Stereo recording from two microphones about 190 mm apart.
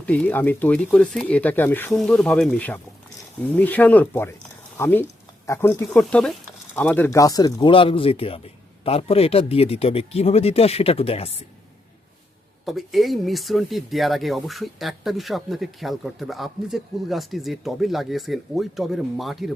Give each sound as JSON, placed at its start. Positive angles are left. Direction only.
{"t": 0.0, "sound": "speech", "side_deg": 10}
{"t": 12.6, "sound": "speech", "side_deg": 0}